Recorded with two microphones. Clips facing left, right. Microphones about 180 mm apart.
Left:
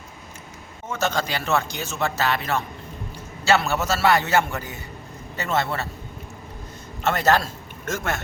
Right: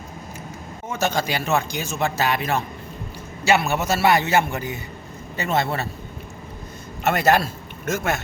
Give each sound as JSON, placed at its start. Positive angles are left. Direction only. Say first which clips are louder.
{"t": 0.9, "sound": "speech", "louder": "right 2 dB", "side_deg": -10}
{"t": 7.0, "sound": "a man's voice", "louder": "right 2 dB", "side_deg": -10}